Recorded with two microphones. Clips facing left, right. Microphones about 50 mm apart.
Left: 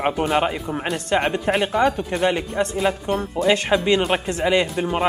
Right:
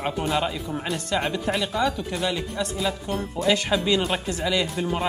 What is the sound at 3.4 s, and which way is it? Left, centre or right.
Speech, left.